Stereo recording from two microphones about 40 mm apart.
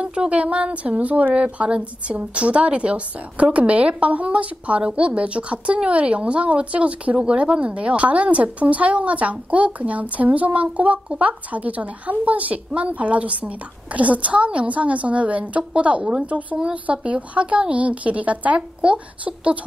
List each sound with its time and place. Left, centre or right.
0.0 s a woman's voice: right